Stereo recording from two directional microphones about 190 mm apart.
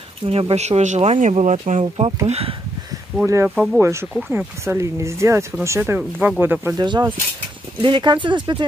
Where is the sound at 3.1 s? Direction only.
10° right (ahead or behind).